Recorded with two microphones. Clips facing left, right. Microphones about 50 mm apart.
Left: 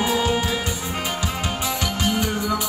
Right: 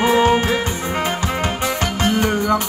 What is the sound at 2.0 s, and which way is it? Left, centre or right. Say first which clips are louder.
Music: right 6 dB; right.